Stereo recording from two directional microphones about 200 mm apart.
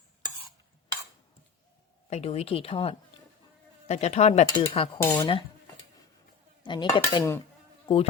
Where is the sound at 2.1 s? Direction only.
35° left (ahead or behind).